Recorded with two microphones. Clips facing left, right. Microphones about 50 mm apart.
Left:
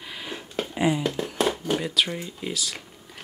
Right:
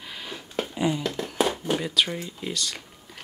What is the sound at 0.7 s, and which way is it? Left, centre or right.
Speech, centre.